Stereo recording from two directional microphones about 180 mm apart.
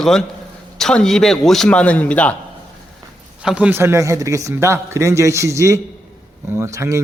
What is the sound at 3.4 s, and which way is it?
A man's voice, 5° right (ahead or behind).